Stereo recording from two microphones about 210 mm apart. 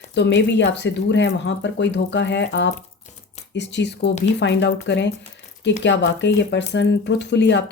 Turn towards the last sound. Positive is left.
turn(degrees=55)  # may be behind; listen again after turning